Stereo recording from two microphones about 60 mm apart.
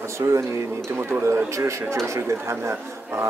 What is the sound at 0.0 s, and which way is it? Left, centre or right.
Speech, right.